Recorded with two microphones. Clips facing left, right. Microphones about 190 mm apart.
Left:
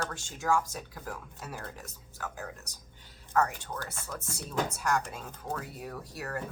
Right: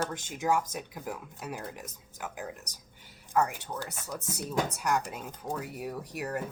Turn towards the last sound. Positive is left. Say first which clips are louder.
# right 3 dB
turn(degrees=-15)  # may be behind; listen again after turning